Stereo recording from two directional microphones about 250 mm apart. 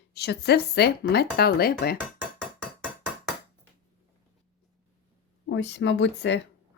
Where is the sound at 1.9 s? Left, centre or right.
Centre.